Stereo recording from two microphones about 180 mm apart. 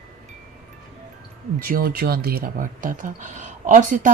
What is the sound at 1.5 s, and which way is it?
Speech, 50° right (ahead or behind).